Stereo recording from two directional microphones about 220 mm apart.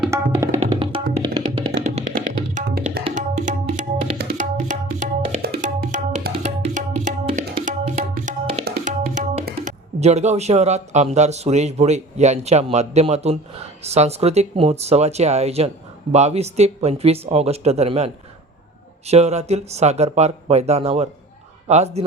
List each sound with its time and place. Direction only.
0.1 s tabla: 10° right (ahead or behind)
0.6 s music: 25° right (ahead or behind)
2.6 s tabla: 45° right (ahead or behind)
8.6 s speech: 40° right (ahead or behind)